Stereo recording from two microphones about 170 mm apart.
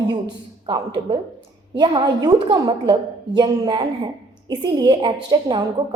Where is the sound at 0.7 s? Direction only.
25° right (ahead or behind).